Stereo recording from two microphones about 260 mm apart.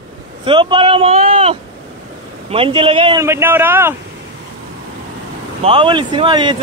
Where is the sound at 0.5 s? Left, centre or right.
Centre.